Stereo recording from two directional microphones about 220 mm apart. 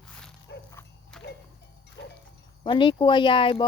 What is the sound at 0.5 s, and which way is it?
Mechanisms, 50° left (ahead or behind).